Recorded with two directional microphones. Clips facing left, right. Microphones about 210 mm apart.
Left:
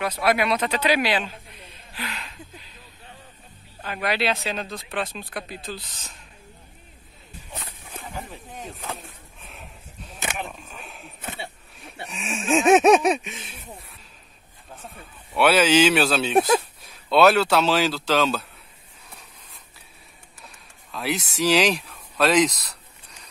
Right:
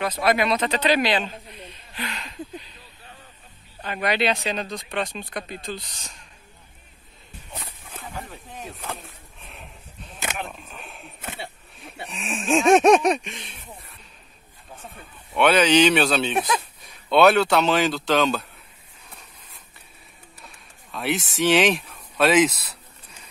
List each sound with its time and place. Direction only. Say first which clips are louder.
0.0 s speech: right 1 dB; 10° left (ahead or behind)
3.8 s speech: right 2 dB; centre (ahead or behind)
7.8 s a sound: left 1 dB; 10° left (ahead or behind)
14.8 s speech: even; 5° left (ahead or behind)
16.3 s speech: left 6 dB; 35° left (ahead or behind)
16.8 s speech: right 2 dB; centre (ahead or behind)
19.0 s a sound: even; centre (ahead or behind)
20.4 s speech: left 2 dB; centre (ahead or behind)